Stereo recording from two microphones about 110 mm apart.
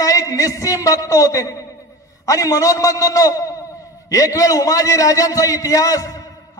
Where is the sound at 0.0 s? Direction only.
30° left (ahead or behind).